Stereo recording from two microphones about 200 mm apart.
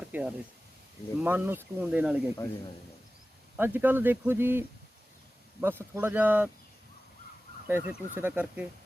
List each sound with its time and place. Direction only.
0.1 s speech: 5° right (ahead or behind)
3.6 s speech: 10° right (ahead or behind)
7.7 s speech: 10° right (ahead or behind)